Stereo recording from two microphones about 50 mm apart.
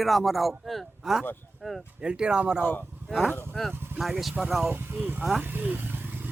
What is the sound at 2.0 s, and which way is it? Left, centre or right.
Speech, centre.